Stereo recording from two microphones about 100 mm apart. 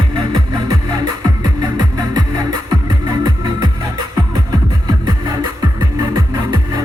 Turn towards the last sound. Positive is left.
turn(degrees=-40)  # may be behind; listen again after turning